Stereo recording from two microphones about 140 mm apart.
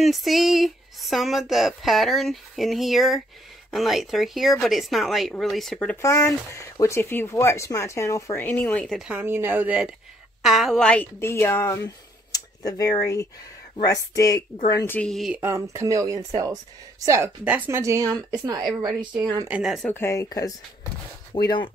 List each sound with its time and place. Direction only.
0.0 s speech: centre (ahead or behind)
5.9 s speech: 25° left (ahead or behind); by 9.1 s centre (ahead or behind)
9.1 s speech: 15° right (ahead or behind); by 11.1 s 5° left (ahead or behind)
11.1 s speech: 20° left (ahead or behind)
15.0 s speech: centre (ahead or behind)
15.3 s speech: 20° right (ahead or behind)
19.4 s speech: 5° right (ahead or behind)
19.9 s speech: 20° left (ahead or behind)